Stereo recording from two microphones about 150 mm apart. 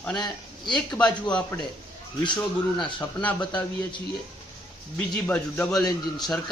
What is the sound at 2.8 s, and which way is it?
Speech, 10° left (ahead or behind).